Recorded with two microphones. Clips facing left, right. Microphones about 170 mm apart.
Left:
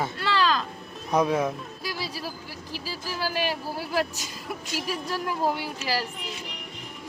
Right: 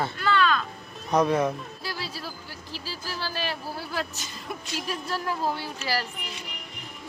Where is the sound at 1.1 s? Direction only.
5° left (ahead or behind).